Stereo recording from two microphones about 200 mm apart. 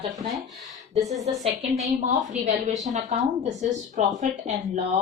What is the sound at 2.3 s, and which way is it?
Speech, 35° right (ahead or behind).